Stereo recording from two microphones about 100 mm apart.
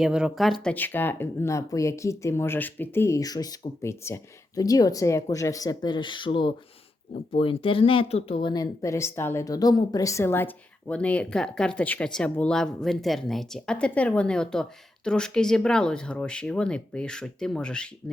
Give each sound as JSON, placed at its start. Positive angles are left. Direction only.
{"t": 0.0, "sound": "speech", "side_deg": -5}
{"t": 0.7, "sound": "speech", "side_deg": 20}
{"t": 3.2, "sound": "speech", "side_deg": 40}
{"t": 3.8, "sound": "speech", "side_deg": 25}
{"t": 4.5, "sound": "speech", "side_deg": 35}
{"t": 7.3, "sound": "speech", "side_deg": 70}
{"t": 8.5, "sound": "a woman's voice", "side_deg": 35}